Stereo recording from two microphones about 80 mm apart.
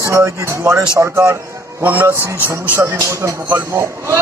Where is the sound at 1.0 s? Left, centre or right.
Right.